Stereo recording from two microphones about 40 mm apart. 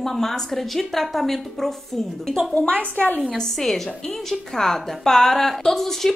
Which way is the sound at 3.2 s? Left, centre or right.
Centre.